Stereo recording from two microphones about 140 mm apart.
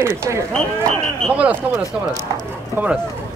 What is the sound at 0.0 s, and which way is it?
Speech, 20° right (ahead or behind).